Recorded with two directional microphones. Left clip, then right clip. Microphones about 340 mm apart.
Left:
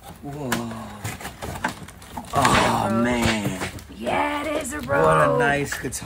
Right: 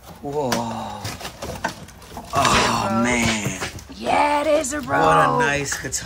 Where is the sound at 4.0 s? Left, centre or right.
Centre.